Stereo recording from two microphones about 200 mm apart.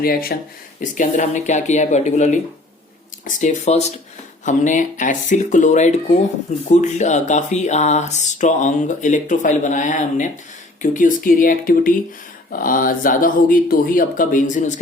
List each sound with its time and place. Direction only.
0.0 s speech: 50° left (ahead or behind)